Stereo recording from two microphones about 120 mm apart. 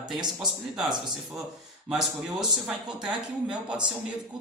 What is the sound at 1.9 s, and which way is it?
Speech, 5° right (ahead or behind).